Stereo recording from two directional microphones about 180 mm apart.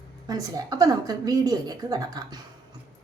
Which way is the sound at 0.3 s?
20° right (ahead or behind).